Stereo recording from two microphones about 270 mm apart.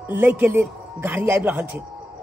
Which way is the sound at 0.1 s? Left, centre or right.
Centre.